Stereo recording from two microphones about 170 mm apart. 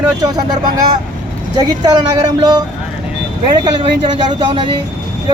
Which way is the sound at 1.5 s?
25° right (ahead or behind).